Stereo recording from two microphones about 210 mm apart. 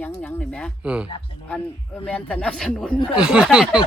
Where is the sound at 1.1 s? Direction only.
25° left (ahead or behind).